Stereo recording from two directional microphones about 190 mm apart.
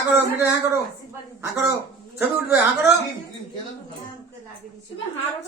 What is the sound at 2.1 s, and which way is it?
Speech, 10° right (ahead or behind).